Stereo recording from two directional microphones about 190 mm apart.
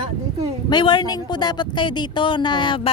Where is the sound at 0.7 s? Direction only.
25° left (ahead or behind).